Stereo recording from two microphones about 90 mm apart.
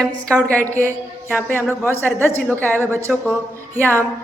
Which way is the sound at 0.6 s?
35° right (ahead or behind).